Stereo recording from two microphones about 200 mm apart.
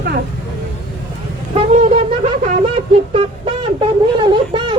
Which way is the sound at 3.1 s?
25° right (ahead or behind).